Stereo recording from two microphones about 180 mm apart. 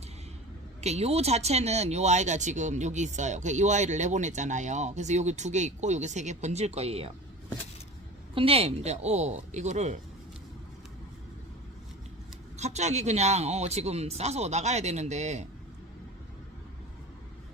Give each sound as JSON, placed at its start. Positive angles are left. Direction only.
{"t": 0.8, "sound": "speech", "side_deg": -35}
{"t": 8.4, "sound": "speech", "side_deg": -30}
{"t": 12.5, "sound": "speech", "side_deg": -40}